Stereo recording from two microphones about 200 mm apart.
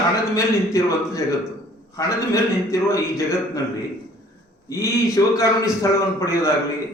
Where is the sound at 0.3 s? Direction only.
15° left (ahead or behind).